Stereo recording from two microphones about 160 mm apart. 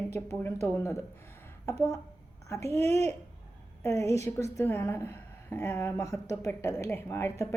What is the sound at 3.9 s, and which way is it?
Speech, 40° right (ahead or behind).